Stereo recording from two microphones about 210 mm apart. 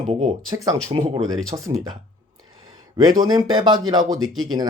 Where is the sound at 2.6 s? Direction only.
20° right (ahead or behind).